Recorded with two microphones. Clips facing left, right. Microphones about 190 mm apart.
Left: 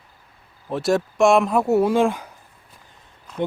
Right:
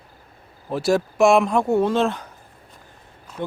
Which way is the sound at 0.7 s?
Centre (ahead or behind).